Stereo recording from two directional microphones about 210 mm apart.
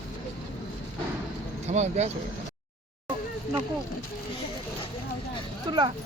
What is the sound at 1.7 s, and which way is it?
Speech, 30° right (ahead or behind).